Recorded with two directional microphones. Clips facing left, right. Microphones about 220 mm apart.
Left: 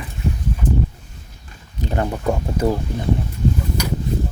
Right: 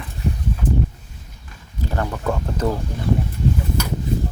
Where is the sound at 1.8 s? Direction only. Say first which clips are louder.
Left 3 dB; 20° left (ahead or behind).